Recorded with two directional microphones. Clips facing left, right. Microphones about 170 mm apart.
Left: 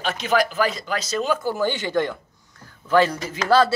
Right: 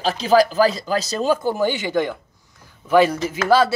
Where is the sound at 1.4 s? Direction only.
15° right (ahead or behind).